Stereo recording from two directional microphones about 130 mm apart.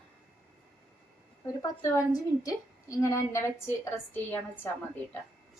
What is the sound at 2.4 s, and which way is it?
A woman's voice, 25° left (ahead or behind).